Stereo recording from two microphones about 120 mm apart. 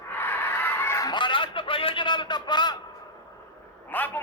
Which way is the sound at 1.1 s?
40° left (ahead or behind).